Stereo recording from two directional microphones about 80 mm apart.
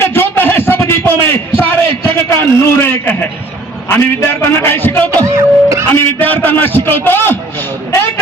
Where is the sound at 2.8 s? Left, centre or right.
Left.